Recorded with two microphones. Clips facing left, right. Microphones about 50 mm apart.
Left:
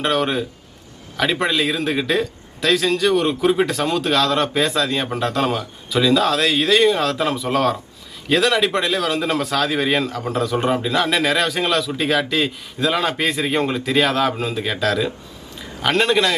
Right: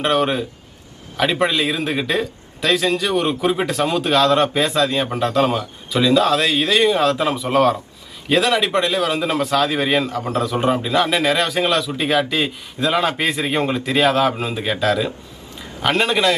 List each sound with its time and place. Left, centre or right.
0.0 s speech: centre